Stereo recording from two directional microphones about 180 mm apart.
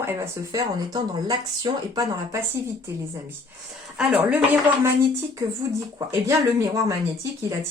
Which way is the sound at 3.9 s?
5° right (ahead or behind).